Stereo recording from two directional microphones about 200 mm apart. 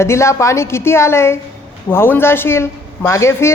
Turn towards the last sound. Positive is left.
turn(degrees=15)  # may be behind; listen again after turning